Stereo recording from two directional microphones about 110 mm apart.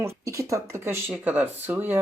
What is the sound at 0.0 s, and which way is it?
Speech, 30° right (ahead or behind).